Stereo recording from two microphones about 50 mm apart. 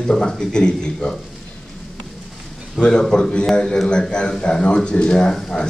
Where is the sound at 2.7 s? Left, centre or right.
Centre.